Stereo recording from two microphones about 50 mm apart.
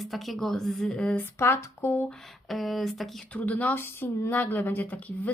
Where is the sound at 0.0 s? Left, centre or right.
Centre.